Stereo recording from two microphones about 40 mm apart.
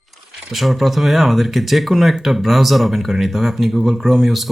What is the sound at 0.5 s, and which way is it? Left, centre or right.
Speech, centre.